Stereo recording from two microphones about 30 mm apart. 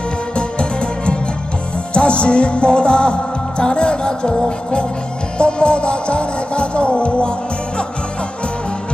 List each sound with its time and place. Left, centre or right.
0.3 s music: left